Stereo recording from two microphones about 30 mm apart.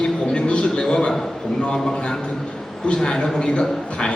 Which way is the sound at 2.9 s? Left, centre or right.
Centre.